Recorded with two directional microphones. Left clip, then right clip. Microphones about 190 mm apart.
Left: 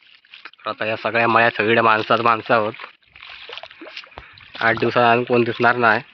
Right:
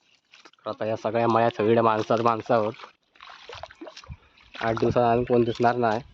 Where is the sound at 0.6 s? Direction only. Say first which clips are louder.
Left 5 dB; 15° right (ahead or behind).